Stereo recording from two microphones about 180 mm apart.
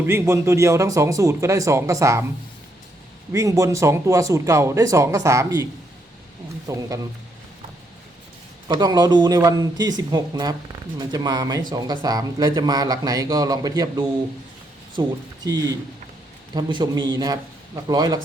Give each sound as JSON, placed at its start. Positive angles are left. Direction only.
{"t": 0.0, "sound": "speech", "side_deg": -15}
{"t": 3.3, "sound": "speech", "side_deg": -15}
{"t": 6.7, "sound": "speech", "side_deg": -15}
{"t": 8.6, "sound": "speech", "side_deg": -20}
{"t": 16.6, "sound": "speech", "side_deg": -25}